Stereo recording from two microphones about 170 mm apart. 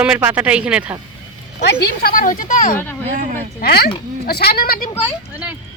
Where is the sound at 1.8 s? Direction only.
60° left (ahead or behind).